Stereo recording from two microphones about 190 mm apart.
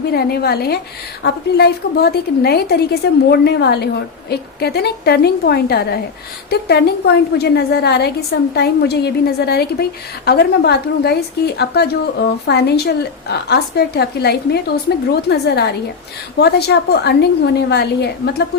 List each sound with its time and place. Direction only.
0.1 s a woman's voice: 55° left (ahead or behind)